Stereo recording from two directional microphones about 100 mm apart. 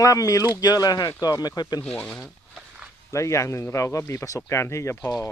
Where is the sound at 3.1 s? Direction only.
30° left (ahead or behind).